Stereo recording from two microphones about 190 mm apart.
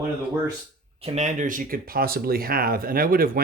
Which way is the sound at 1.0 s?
35° right (ahead or behind).